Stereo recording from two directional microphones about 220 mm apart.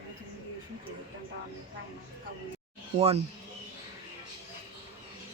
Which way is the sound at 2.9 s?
25° right (ahead or behind).